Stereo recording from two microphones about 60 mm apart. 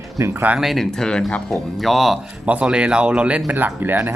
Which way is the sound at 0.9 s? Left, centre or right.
Centre.